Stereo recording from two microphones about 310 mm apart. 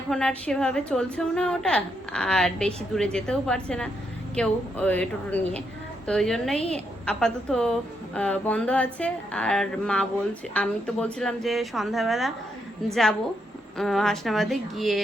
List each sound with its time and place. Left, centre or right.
0.1 s a woman's voice: centre